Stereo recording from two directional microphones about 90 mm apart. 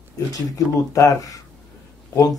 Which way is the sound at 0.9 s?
40° left (ahead or behind).